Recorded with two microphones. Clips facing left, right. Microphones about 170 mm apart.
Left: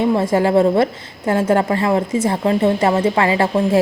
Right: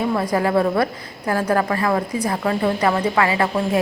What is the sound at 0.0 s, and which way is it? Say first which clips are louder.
A woman's voice: left 4 dB; 25° left (ahead or behind).